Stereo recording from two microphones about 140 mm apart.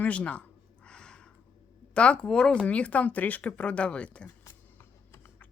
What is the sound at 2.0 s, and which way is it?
Speech, 10° left (ahead or behind).